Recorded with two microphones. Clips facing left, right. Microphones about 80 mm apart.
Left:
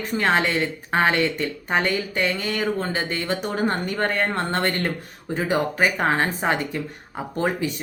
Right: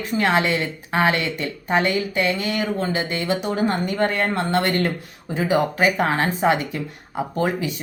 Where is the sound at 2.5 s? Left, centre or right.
Left.